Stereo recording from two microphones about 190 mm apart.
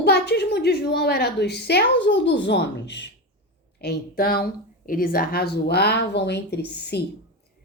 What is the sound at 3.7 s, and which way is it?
Speech, 55° left (ahead or behind).